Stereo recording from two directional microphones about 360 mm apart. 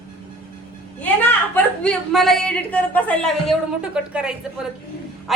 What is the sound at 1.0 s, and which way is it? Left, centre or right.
A woman's voice, centre.